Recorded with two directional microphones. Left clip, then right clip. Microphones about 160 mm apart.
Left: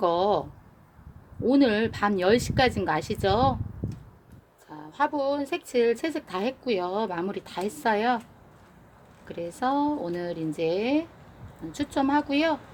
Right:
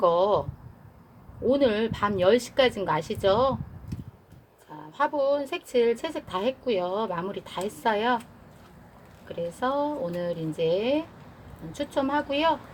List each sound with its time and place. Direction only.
0.0 s speech: 50° left (ahead or behind)
1.5 s speech: 50° left (ahead or behind)
4.9 s speech: 50° left (ahead or behind)
9.3 s speech: 50° left (ahead or behind)